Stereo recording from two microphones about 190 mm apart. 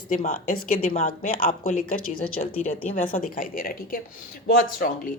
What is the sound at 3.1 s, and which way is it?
A woman's voice, 45° left (ahead or behind).